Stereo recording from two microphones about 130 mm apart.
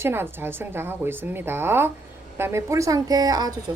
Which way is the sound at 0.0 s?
15° right (ahead or behind).